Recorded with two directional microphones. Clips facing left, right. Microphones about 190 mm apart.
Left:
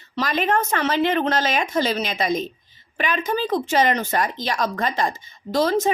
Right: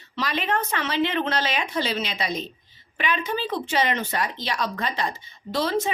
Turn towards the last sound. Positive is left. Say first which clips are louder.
# left 5 dB
turn(degrees=45)  # may be behind; listen again after turning